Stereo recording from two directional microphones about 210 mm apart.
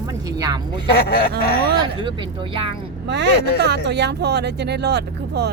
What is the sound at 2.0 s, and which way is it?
Speech, 25° right (ahead or behind).